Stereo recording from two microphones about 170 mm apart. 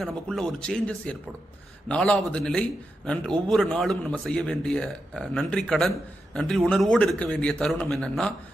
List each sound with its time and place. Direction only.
0.0 s a man's voice: centre (ahead or behind)